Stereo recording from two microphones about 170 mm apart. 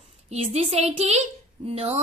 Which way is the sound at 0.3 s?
35° right (ahead or behind).